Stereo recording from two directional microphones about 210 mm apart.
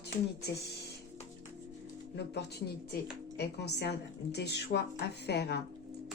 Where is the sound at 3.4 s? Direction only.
50° left (ahead or behind).